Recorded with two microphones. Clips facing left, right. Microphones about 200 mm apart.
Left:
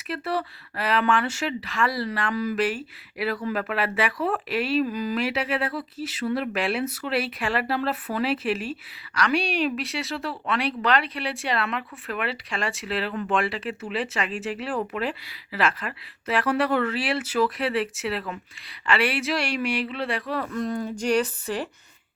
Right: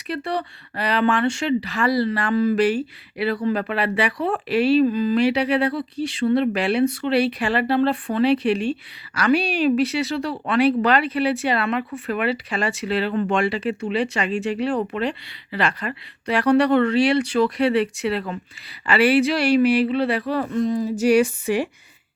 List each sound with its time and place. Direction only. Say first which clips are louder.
0.1 s a woman's voice: right 2 dB; 5° left (ahead or behind)